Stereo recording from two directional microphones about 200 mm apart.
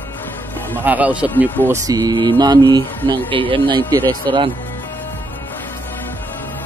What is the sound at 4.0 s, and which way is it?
Speech, 10° left (ahead or behind).